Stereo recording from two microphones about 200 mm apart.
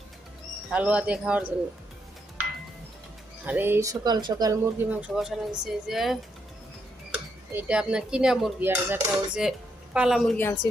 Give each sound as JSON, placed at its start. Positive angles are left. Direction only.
{"t": 0.7, "sound": "speech", "side_deg": -5}
{"t": 3.4, "sound": "speech", "side_deg": -10}
{"t": 4.9, "sound": "speech", "side_deg": -10}
{"t": 7.5, "sound": "speech", "side_deg": -5}
{"t": 8.7, "sound": "speech", "side_deg": -10}